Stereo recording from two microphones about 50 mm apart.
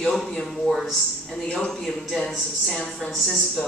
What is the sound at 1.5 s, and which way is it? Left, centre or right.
Speech, centre.